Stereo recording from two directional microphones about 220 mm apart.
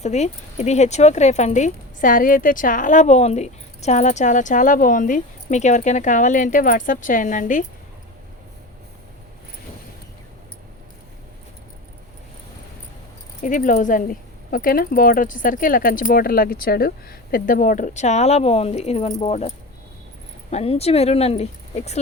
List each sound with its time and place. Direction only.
0.0 s speech: 30° left (ahead or behind)
13.4 s speech: 35° left (ahead or behind)